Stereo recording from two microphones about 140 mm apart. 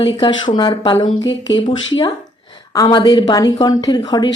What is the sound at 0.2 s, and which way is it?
Speech, 35° left (ahead or behind).